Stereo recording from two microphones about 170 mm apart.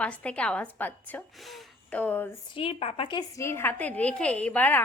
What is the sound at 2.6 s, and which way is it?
A woman's voice, 35° left (ahead or behind).